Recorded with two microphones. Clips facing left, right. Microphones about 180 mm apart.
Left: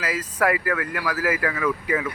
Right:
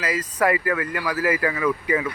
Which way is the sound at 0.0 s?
5° left (ahead or behind).